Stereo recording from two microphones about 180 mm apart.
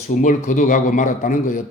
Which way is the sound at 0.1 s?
45° left (ahead or behind).